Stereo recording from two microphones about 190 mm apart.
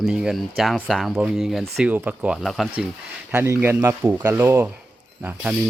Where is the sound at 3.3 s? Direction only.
15° right (ahead or behind).